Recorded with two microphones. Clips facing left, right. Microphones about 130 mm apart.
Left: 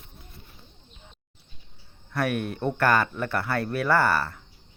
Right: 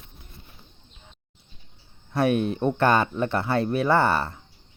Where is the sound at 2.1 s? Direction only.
25° right (ahead or behind).